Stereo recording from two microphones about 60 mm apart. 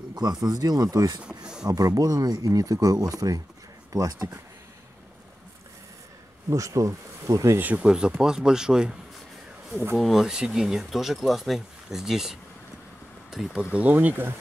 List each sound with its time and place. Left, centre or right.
0.1 s speech: right
1.2 s a sound: centre
1.7 s speech: right
6.5 s speech: right
7.7 s speech: centre
9.9 s speech: centre
13.7 s speech: right